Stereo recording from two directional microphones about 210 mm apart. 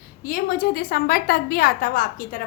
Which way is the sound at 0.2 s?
45° left (ahead or behind).